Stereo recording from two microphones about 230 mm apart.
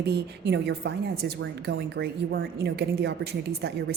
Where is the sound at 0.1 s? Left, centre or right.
Right.